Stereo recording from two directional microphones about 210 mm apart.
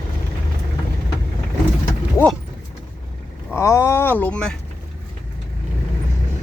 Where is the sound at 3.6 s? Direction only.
15° left (ahead or behind).